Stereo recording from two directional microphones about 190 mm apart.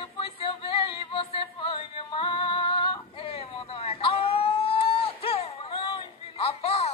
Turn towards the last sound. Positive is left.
turn(degrees=30)  # may be behind; listen again after turning